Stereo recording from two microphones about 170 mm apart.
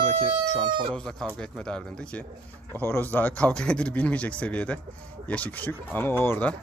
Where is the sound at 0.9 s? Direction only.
5° left (ahead or behind).